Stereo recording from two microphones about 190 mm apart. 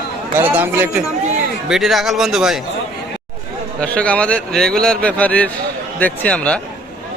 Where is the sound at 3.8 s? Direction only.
5° left (ahead or behind).